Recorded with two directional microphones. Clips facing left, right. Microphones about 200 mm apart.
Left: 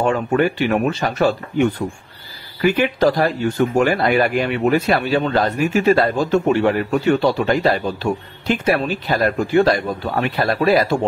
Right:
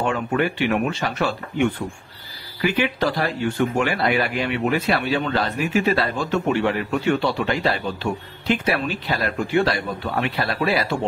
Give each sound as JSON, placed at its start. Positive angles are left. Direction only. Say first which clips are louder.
{"t": 0.0, "sound": "speech", "louder": "left 5 dB", "side_deg": 40}